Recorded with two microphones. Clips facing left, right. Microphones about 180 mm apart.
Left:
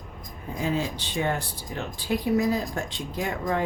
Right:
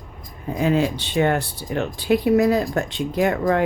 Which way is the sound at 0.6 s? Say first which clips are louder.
Right 8 dB; 70° right (ahead or behind).